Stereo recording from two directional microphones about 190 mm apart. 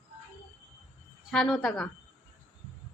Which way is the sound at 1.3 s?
Centre (ahead or behind).